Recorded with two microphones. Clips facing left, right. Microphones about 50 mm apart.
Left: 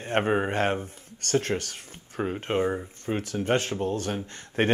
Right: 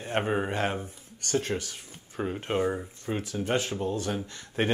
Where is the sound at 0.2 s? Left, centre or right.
Left.